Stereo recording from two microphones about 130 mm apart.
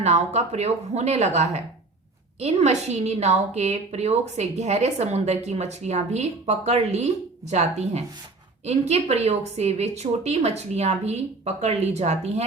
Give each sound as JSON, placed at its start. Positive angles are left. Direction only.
{"t": 0.0, "sound": "a woman's voice", "side_deg": -60}
{"t": 8.9, "sound": "a woman's voice", "side_deg": -55}